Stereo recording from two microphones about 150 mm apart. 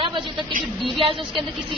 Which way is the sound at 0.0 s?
35° right (ahead or behind).